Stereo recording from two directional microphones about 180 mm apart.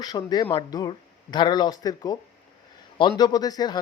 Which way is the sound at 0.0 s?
20° left (ahead or behind).